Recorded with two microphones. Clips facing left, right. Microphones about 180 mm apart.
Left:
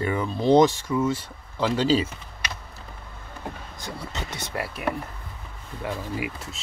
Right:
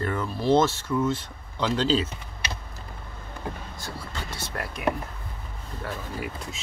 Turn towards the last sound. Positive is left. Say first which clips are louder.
# left 2 dB
turn(degrees=5)  # may be behind; listen again after turning